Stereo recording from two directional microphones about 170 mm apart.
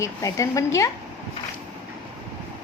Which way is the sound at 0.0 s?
20° left (ahead or behind).